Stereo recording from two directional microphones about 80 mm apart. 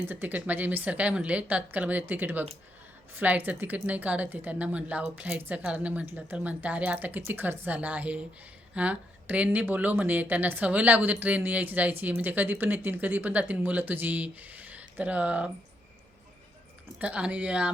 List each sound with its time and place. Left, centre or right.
0.0 s speech: right
17.0 s speech: centre